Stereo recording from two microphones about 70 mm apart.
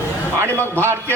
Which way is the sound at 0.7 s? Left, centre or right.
Right.